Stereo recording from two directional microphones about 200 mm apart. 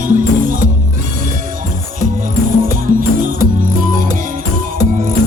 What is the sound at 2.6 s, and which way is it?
Music, 45° right (ahead or behind).